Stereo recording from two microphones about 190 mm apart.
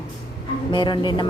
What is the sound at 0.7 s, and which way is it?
Speech, 25° left (ahead or behind).